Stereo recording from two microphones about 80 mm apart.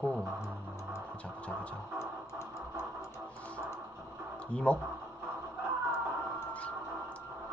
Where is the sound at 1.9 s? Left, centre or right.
Left.